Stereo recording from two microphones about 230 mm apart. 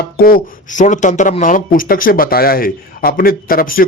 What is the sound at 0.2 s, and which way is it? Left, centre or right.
Speech, left.